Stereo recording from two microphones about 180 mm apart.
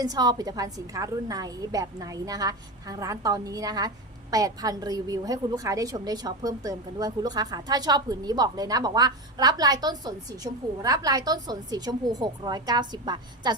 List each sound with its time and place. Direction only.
0.0 s a woman's voice: 20° right (ahead or behind)